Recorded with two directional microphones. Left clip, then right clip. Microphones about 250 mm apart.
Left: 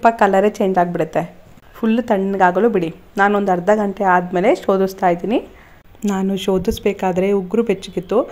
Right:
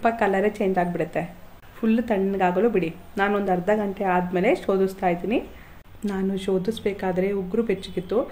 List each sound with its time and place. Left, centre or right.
0.0 s a woman's voice: left